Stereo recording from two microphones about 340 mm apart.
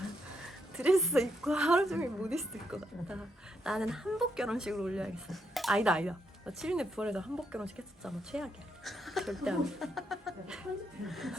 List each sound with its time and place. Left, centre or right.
0.8 s a woman's voice: centre